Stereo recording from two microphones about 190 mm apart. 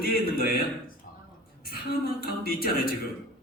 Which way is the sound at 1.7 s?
55° left (ahead or behind).